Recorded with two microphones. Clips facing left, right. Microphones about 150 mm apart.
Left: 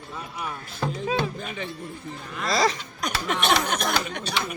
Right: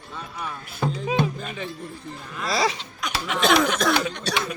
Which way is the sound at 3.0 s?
45° left (ahead or behind).